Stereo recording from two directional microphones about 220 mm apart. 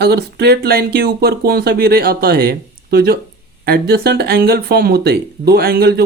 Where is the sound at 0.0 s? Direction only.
45° right (ahead or behind).